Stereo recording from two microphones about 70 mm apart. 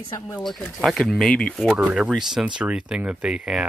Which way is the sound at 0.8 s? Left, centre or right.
Centre.